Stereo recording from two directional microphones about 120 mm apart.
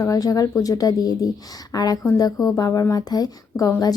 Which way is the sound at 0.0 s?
30° left (ahead or behind).